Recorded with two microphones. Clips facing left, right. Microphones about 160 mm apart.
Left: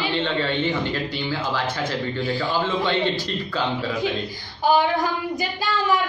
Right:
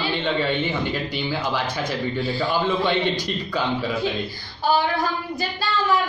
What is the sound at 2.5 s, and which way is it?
A man's voice, 15° right (ahead or behind).